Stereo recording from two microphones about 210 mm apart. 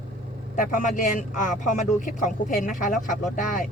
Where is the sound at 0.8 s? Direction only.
40° left (ahead or behind).